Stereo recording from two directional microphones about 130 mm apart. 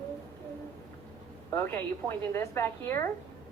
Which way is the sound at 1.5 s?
20° left (ahead or behind).